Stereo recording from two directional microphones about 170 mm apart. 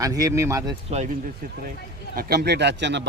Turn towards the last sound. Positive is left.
turn(degrees=-90)